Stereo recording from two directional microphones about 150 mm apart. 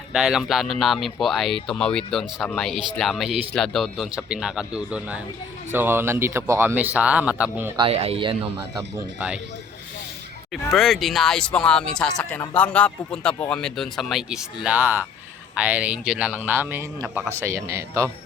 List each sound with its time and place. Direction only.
0.1 s speech: 5° right (ahead or behind)
7.8 s speech: 40° right (ahead or behind)
9.1 s speech: 5° right (ahead or behind)
10.5 s speech: centre (ahead or behind); by 18.1 s 20° right (ahead or behind)